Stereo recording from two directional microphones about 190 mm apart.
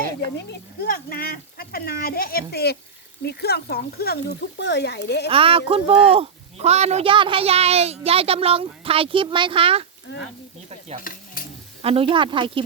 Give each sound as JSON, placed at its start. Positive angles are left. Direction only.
{"t": 0.3, "sound": "speech", "side_deg": 50}
{"t": 5.3, "sound": "speech", "side_deg": -30}
{"t": 10.1, "sound": "frying", "side_deg": 65}
{"t": 10.7, "sound": "speech", "side_deg": -35}
{"t": 11.0, "sound": "stir", "side_deg": 50}
{"t": 11.8, "sound": "speech", "side_deg": -30}